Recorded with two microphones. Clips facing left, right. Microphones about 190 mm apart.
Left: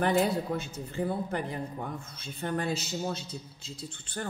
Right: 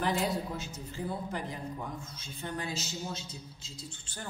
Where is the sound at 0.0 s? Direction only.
55° left (ahead or behind).